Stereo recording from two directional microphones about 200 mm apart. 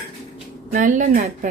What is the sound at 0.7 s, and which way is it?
Speech, 40° right (ahead or behind).